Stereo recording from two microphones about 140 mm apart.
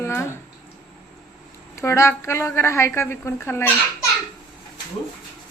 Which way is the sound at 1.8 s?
20° left (ahead or behind).